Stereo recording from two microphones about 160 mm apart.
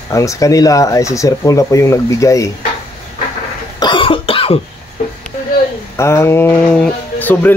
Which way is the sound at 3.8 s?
30° left (ahead or behind).